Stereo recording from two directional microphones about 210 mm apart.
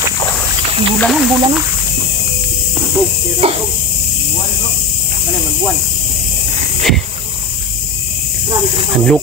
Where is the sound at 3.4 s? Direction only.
30° right (ahead or behind).